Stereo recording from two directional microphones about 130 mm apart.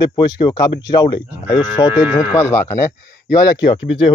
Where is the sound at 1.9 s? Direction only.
5° right (ahead or behind).